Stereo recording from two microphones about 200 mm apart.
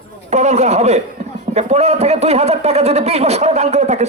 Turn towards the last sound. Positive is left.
turn(degrees=-35)  # may be behind; listen again after turning